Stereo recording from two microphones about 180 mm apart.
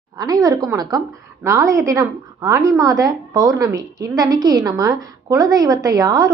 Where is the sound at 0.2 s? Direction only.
20° right (ahead or behind).